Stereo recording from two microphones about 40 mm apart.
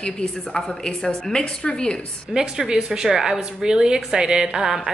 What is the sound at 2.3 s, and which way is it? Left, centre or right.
A woman's voice, centre.